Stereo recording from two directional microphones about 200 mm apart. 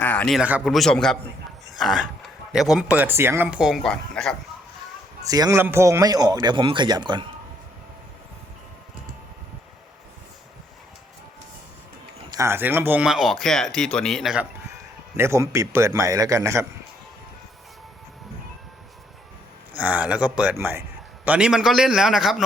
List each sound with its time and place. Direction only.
0.0 s a man's voice: 5° left (ahead or behind)
5.3 s a man's voice: 15° right (ahead or behind)
12.3 s speech: 15° right (ahead or behind)
15.1 s a man's voice: 15° right (ahead or behind)
19.7 s a man's voice: 10° right (ahead or behind)